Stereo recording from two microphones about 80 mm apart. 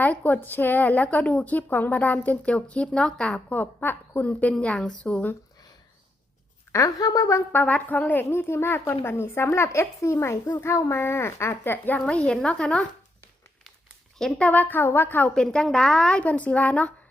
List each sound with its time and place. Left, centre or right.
0.0 s a woman's voice: left
6.7 s a woman's voice: left
7.5 s a woman's voice: centre
11.9 s a woman's voice: centre
14.2 s speech: centre
14.4 s a woman's voice: left
15.4 s a woman's voice: centre